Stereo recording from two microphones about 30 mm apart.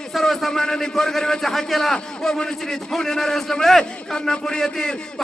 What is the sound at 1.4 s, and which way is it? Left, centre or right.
A man's voice, centre.